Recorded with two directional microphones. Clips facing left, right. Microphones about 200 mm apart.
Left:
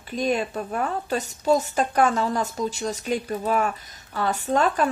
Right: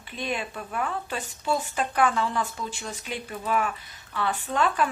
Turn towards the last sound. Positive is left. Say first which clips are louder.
# left 3 dB
turn(degrees=40)  # may be behind; listen again after turning